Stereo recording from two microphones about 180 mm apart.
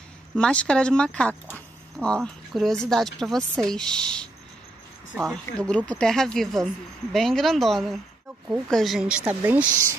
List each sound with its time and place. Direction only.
0.4 s speech: 5° left (ahead or behind)